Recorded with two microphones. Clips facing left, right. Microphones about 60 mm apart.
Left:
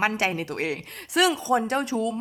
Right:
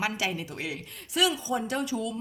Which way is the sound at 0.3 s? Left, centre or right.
Left.